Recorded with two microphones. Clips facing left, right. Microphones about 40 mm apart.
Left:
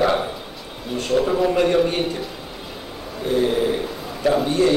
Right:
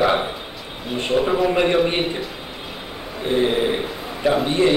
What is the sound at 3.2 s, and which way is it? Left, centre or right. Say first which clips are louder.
A man's voice: even; right.